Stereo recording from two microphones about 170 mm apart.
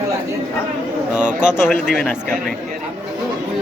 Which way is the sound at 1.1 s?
5° right (ahead or behind).